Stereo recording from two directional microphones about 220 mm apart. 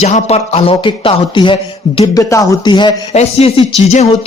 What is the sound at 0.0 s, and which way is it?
A man's voice, 30° left (ahead or behind).